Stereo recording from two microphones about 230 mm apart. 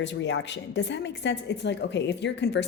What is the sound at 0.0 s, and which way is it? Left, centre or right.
A woman's voice, left.